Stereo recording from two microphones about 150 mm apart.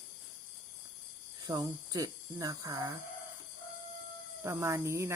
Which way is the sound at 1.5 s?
25° right (ahead or behind).